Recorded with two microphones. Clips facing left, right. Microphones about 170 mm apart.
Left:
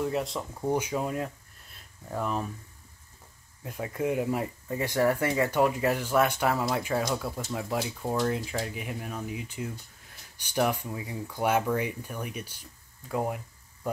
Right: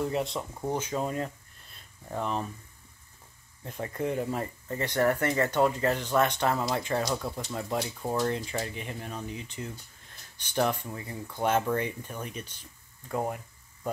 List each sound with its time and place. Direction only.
0.0 s speech: centre (ahead or behind)
0.7 s speech: 10° left (ahead or behind)
3.6 s speech: 5° left (ahead or behind)